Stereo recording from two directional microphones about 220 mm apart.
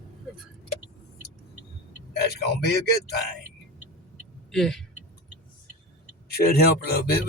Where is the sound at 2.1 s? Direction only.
45° left (ahead or behind).